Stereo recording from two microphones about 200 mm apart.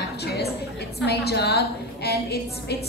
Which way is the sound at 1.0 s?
55° left (ahead or behind).